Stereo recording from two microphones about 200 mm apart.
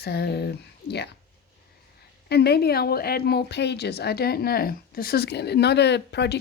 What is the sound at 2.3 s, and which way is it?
Speech, 55° left (ahead or behind).